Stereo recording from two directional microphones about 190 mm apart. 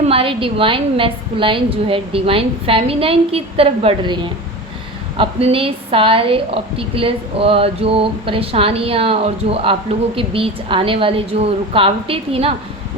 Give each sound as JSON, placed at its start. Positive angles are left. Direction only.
{"t": 0.0, "sound": "a woman's voice", "side_deg": -30}